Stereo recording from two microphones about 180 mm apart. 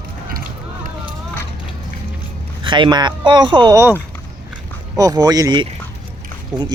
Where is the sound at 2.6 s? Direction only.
25° right (ahead or behind).